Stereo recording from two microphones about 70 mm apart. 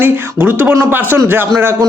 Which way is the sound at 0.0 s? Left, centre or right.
Right.